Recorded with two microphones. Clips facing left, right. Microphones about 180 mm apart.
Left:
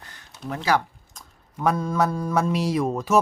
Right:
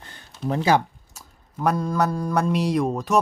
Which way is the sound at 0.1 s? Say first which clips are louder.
Right 6 dB; 30° right (ahead or behind).